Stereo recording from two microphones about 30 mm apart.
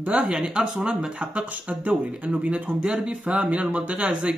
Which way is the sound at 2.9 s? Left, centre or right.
Right.